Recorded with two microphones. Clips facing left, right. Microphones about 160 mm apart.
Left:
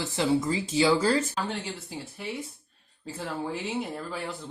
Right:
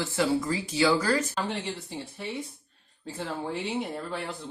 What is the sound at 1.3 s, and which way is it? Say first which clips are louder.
Speech: right 1 dB; 5° left (ahead or behind).